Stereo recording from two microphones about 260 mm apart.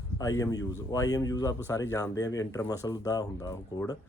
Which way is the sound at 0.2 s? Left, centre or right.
Centre.